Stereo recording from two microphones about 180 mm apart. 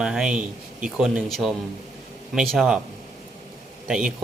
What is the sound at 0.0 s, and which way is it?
Speech, 5° right (ahead or behind).